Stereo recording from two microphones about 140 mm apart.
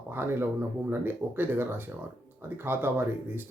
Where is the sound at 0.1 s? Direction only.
15° right (ahead or behind).